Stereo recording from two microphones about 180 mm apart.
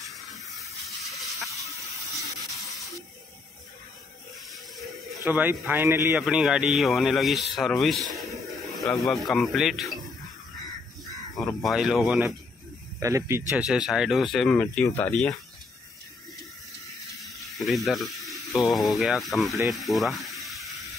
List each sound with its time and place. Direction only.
0.0 s hiss: centre (ahead or behind)
4.5 s a sound: centre (ahead or behind)
5.2 s a man's voice: 10° right (ahead or behind)
11.3 s speech: centre (ahead or behind)
13.0 s speech: 15° right (ahead or behind); by 15.3 s 5° left (ahead or behind)
17.2 s speech: centre (ahead or behind)
19.7 s sizzle: centre (ahead or behind)